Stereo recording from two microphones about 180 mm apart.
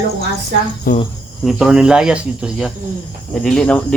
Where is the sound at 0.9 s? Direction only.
50° left (ahead or behind).